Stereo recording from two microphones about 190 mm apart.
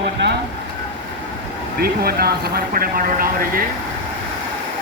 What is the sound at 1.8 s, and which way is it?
Speech, 55° right (ahead or behind).